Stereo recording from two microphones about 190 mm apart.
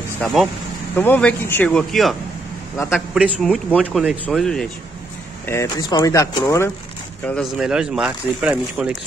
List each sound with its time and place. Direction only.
0.2 s speech: centre (ahead or behind)
5.5 s speech: 20° left (ahead or behind)
7.2 s speech: centre (ahead or behind)